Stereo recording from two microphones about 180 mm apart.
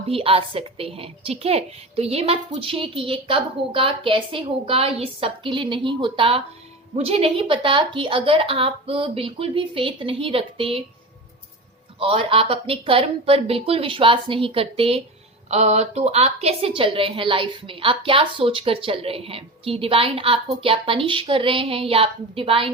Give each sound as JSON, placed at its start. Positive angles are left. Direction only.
{"t": 0.1, "sound": "a woman's voice", "side_deg": -30}
{"t": 11.9, "sound": "a woman's voice", "side_deg": -30}